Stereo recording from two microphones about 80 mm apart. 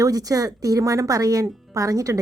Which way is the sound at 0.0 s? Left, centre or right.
Right.